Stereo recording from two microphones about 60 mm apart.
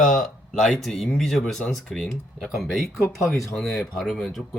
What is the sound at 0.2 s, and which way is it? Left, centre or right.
Speech, centre.